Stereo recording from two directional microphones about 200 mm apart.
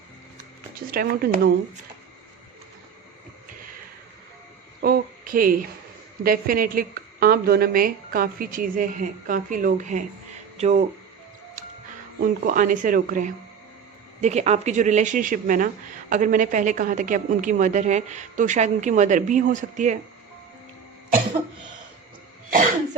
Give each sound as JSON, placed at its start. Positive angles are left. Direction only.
{"t": 0.9, "sound": "a woman's voice", "side_deg": -50}
{"t": 4.8, "sound": "a sound", "side_deg": -45}
{"t": 6.2, "sound": "a woman's voice", "side_deg": -45}
{"t": 12.2, "sound": "a woman's voice", "side_deg": -45}